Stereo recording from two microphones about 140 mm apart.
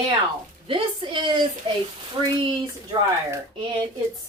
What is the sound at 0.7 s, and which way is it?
A woman's voice, 35° right (ahead or behind).